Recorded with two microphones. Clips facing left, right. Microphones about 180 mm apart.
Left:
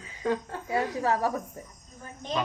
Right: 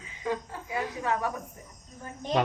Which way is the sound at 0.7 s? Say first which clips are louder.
Left 4 dB; 35° left (ahead or behind).